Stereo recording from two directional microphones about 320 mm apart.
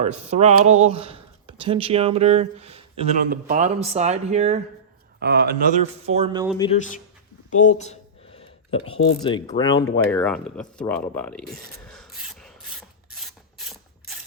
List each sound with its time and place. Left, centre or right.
0.0 s speech: right
6.6 s speech: left
7.8 s a sound: centre
9.2 s speech: centre